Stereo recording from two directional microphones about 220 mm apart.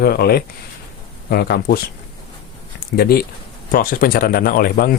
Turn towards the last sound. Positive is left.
turn(degrees=40)  # may be behind; listen again after turning